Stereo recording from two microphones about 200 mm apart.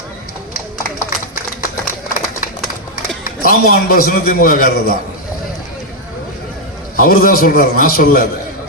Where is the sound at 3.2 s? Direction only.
45° left (ahead or behind).